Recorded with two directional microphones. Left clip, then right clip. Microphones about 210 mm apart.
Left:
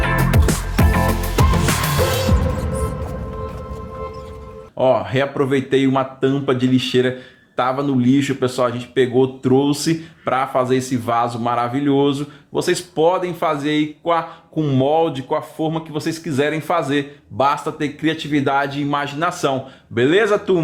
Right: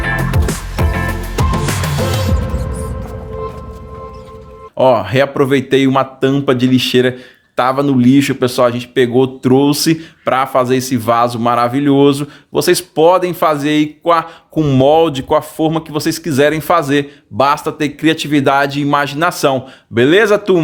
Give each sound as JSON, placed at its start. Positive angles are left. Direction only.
{"t": 0.2, "sound": "music", "side_deg": 0}
{"t": 4.8, "sound": "speech", "side_deg": -40}